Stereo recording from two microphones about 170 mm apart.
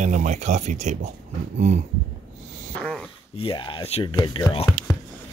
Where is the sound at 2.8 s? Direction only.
5° left (ahead or behind).